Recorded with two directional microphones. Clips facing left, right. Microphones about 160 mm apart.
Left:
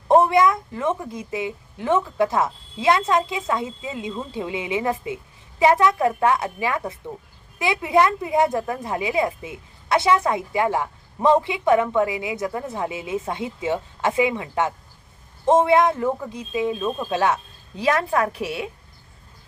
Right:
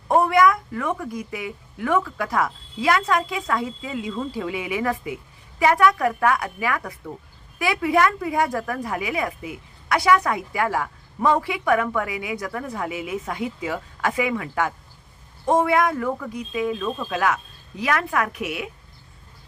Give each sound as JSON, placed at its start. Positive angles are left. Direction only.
{"t": 0.1, "sound": "a woman's voice", "side_deg": 25}